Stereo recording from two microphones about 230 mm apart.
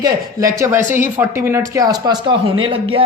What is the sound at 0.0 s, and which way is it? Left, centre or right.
Speech, centre.